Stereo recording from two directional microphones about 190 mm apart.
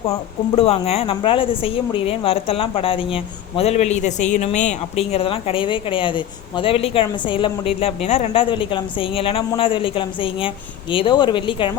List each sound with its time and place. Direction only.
0.5 s speech: 30° left (ahead or behind)